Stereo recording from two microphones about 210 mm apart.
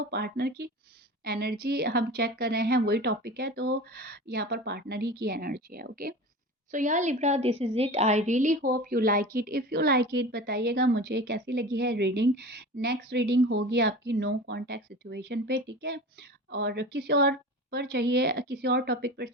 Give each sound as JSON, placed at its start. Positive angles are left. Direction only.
{"t": 0.1, "sound": "a woman's voice", "side_deg": -50}